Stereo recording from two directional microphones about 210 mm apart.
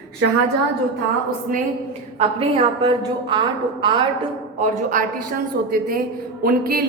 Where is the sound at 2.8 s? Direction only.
20° right (ahead or behind).